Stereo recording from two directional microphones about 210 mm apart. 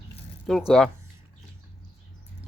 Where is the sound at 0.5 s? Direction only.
Centre (ahead or behind).